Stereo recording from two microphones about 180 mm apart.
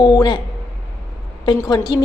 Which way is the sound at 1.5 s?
20° left (ahead or behind).